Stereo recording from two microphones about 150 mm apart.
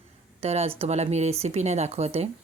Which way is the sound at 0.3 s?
45° right (ahead or behind).